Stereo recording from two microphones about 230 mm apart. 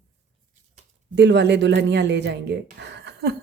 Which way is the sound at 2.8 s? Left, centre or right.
Right.